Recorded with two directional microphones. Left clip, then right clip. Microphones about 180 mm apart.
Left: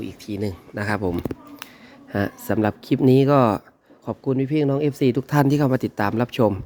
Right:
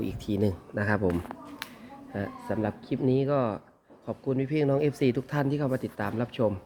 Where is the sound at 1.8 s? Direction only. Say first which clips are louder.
Left 12 dB; 60° left (ahead or behind).